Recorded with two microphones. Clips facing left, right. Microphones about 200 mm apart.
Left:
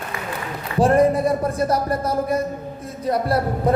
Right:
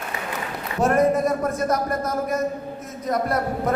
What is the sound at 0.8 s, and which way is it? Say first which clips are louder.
Speech: left 3 dB; 30° left (ahead or behind).